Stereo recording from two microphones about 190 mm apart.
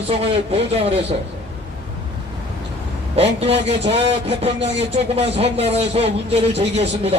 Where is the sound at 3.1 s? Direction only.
30° right (ahead or behind).